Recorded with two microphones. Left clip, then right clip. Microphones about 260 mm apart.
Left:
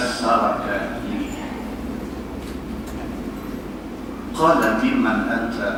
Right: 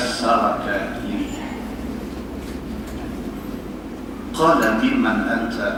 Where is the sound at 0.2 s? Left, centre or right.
Right.